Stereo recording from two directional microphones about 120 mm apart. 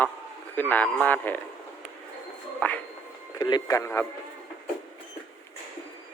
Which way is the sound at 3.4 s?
35° left (ahead or behind).